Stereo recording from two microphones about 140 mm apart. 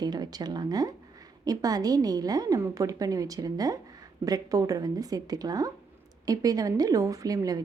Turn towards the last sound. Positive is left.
turn(degrees=-25)  # may be behind; listen again after turning